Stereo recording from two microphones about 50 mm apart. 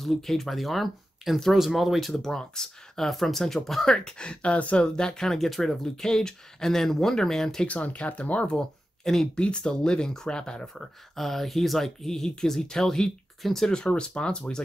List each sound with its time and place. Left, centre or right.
0.0 s speech: centre
2.3 s speech: centre
7.6 s speech: left
8.5 s speech: centre
9.4 s speech: centre
10.7 s speech: centre